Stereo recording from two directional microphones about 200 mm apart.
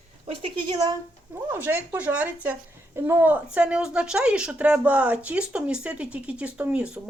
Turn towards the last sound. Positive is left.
turn(degrees=-5)  # may be behind; listen again after turning